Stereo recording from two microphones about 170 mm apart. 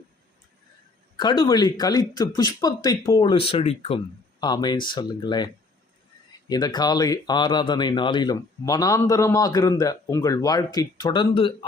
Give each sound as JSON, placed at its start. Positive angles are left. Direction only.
{"t": 1.1, "sound": "speech", "side_deg": 25}
{"t": 6.5, "sound": "speech", "side_deg": 25}